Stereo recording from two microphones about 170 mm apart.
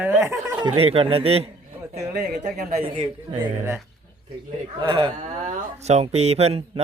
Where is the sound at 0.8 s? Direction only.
35° right (ahead or behind).